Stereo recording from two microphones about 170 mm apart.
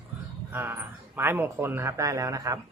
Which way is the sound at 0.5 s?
10° right (ahead or behind).